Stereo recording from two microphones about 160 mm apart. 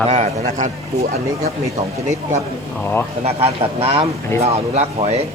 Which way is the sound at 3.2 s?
40° right (ahead or behind).